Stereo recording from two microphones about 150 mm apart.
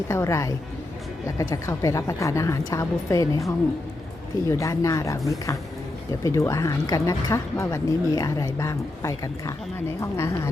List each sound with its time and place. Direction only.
0.1 s speech: 20° left (ahead or behind)